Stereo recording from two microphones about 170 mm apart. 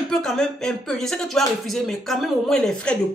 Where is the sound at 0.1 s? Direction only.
5° left (ahead or behind).